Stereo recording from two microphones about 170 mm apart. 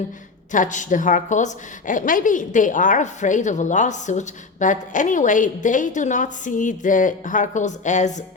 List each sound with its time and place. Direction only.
0.5 s a woman's voice: 50° left (ahead or behind)